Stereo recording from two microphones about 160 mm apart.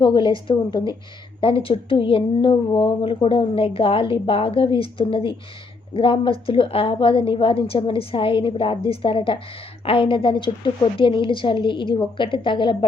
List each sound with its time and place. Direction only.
0.0 s a woman's voice: 30° left (ahead or behind)